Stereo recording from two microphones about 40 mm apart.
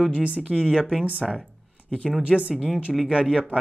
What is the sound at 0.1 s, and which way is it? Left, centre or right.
Speech, right.